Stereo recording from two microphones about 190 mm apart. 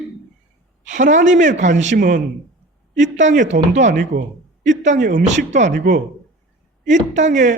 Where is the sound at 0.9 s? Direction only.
40° right (ahead or behind).